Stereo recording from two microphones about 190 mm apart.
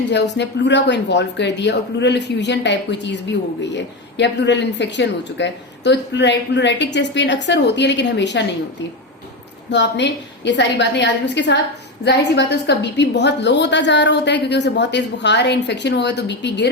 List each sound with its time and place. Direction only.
0.1 s a woman's voice: 65° left (ahead or behind)
4.2 s a woman's voice: 65° left (ahead or behind)
9.6 s a woman's voice: 65° left (ahead or behind)